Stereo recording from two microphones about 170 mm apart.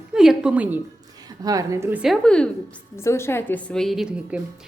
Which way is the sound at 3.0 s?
15° left (ahead or behind).